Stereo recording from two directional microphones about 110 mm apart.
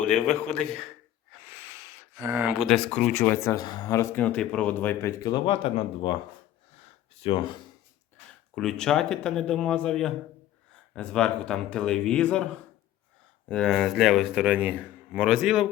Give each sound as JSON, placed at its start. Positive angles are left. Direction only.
{"t": 0.1, "sound": "speech", "side_deg": 10}
{"t": 1.3, "sound": "a sound", "side_deg": -20}
{"t": 2.6, "sound": "speech", "side_deg": 5}
{"t": 4.2, "sound": "speech", "side_deg": 10}
{"t": 5.3, "sound": "speech", "side_deg": 55}
{"t": 7.2, "sound": "speech", "side_deg": 50}
{"t": 8.5, "sound": "speech", "side_deg": 5}
{"t": 13.5, "sound": "speech", "side_deg": 5}